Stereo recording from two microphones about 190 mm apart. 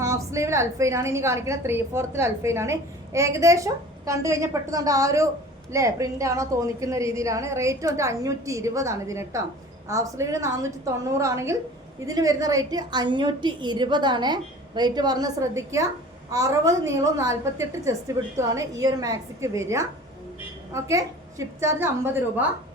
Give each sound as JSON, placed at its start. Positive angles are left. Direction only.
{"t": 0.0, "sound": "a woman's voice", "side_deg": -15}